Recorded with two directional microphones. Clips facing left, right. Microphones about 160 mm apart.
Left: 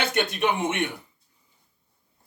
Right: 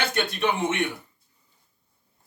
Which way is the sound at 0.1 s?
15° left (ahead or behind).